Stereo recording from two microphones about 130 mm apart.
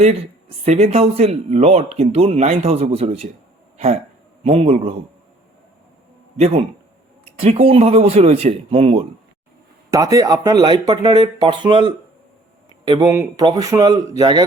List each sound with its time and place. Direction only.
0.6 s speech: 55° right (ahead or behind)
4.4 s speech: 50° right (ahead or behind)
6.3 s speech: 50° right (ahead or behind)
9.9 s a man's voice: 25° right (ahead or behind)